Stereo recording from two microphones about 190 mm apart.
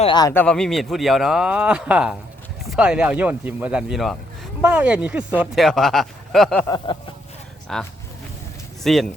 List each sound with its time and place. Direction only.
0.0 s speech: 20° left (ahead or behind)
0.3 s speech: 5° left (ahead or behind)
6.7 s speech: 20° left (ahead or behind)
7.7 s speech: 5° left (ahead or behind)